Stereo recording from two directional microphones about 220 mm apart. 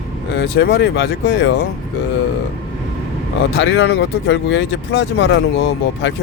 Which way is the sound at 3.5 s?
50° left (ahead or behind).